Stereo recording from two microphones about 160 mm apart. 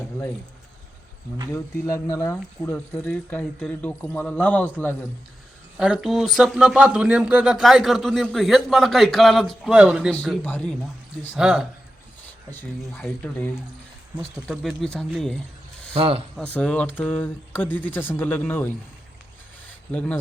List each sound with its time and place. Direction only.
1.5 s speech: 20° left (ahead or behind)
5.7 s speech: 5° right (ahead or behind)
10.1 s speech: 10° left (ahead or behind)
11.3 s speech: 5° right (ahead or behind)
12.5 s speech: 10° left (ahead or behind)
14.5 s speech: centre (ahead or behind)
16.0 s speech: 35° right (ahead or behind)
16.3 s speech: 5° left (ahead or behind)
19.9 s speech: 10° left (ahead or behind)